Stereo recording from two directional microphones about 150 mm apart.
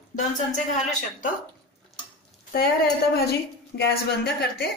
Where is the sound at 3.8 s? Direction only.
90° left.